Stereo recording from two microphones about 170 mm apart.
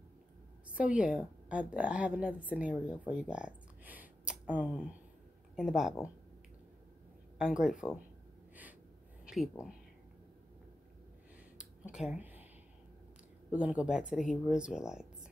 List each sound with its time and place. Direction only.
0.7 s a woman's voice: 5° right (ahead or behind)
7.3 s speech: 5° right (ahead or behind)
9.2 s speech: 5° right (ahead or behind)
11.5 s a sound: 5° right (ahead or behind)
13.5 s speech: 5° right (ahead or behind)